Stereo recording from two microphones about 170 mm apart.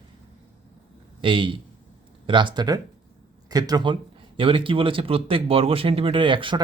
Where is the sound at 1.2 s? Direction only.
30° right (ahead or behind).